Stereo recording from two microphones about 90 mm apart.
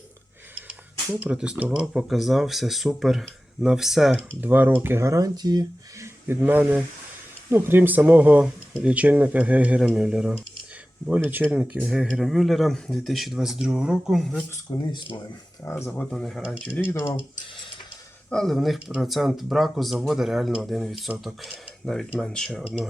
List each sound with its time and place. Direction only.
1.2 s speech: 10° right (ahead or behind)
4.4 s speech: 20° right (ahead or behind); by 5.6 s 45° right (ahead or behind)
6.0 s speech: 25° right (ahead or behind); by 14.4 s centre (ahead or behind)
14.7 s speech: 50° left (ahead or behind)
15.6 s speech: 30° left (ahead or behind)
15.9 s speech: 5° left (ahead or behind)
16.8 s speech: 20° left (ahead or behind)
18.3 s speech: 5° left (ahead or behind)
22.6 s speech: 10° right (ahead or behind)